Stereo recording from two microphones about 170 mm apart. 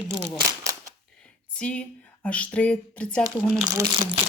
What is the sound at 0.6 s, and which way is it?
Cap gun, 20° right (ahead or behind).